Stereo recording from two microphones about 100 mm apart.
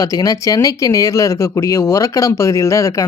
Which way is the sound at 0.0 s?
35° left (ahead or behind).